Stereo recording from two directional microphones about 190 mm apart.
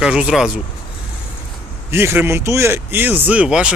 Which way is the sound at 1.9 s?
10° right (ahead or behind).